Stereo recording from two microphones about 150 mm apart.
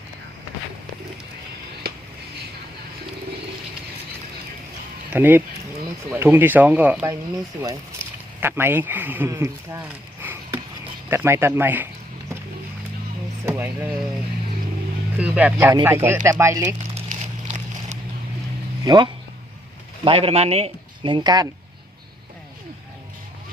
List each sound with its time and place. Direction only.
5.1 s speech: 15° right (ahead or behind)
11.1 s speech: 15° right (ahead or behind)
13.4 s speech: 10° right (ahead or behind)
15.2 s speech: 10° right (ahead or behind)
16.9 s a sound: 50° right (ahead or behind)
18.9 s speech: 30° right (ahead or behind)
20.1 s speech: 40° right (ahead or behind)